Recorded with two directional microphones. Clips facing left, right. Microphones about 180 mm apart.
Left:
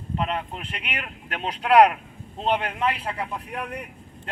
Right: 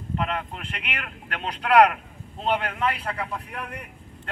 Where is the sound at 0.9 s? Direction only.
15° left (ahead or behind).